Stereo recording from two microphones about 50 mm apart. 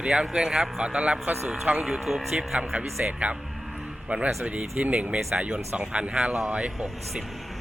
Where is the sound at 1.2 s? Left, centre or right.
Right.